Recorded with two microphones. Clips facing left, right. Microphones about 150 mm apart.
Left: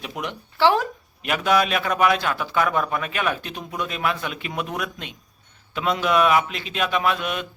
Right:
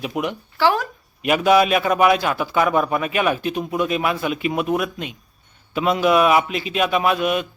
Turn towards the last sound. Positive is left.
turn(degrees=-10)  # may be behind; listen again after turning